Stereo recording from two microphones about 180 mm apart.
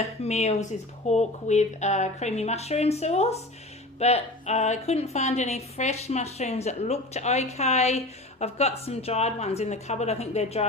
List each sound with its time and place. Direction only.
0.0 s a woman's voice: 35° left (ahead or behind)